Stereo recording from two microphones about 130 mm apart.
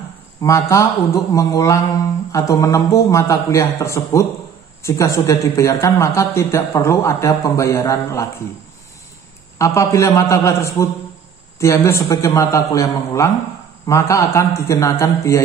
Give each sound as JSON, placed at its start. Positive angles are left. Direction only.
{"t": 0.4, "sound": "speech", "side_deg": 25}
{"t": 9.6, "sound": "speech", "side_deg": 20}